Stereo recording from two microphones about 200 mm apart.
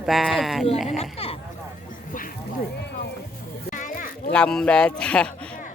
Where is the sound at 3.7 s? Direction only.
40° left (ahead or behind).